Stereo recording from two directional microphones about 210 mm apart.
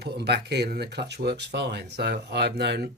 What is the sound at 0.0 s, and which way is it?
Speech, 50° right (ahead or behind).